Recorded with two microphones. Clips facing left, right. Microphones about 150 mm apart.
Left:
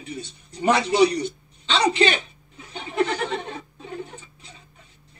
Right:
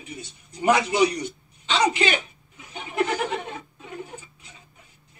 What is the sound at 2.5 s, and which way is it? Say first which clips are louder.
Chuckle: left 2 dB; 30° left (ahead or behind).